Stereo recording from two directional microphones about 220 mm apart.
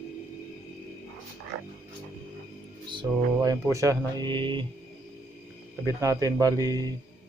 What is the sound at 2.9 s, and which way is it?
Speech, 20° right (ahead or behind).